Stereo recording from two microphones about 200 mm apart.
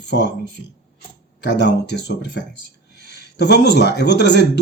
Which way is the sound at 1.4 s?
60° left (ahead or behind).